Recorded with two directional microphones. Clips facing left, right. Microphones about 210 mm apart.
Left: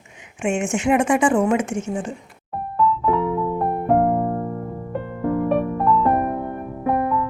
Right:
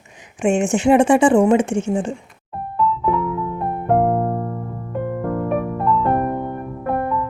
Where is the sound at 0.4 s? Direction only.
35° right (ahead or behind).